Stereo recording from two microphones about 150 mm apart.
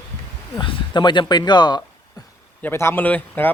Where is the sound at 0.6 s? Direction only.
30° left (ahead or behind).